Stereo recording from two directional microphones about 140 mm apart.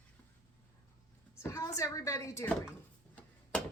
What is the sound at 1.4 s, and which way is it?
A woman's voice, 20° left (ahead or behind).